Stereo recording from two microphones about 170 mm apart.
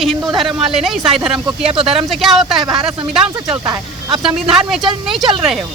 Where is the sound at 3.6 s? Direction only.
25° right (ahead or behind).